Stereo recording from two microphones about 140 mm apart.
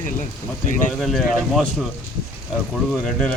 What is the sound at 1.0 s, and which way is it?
Speech, centre (ahead or behind).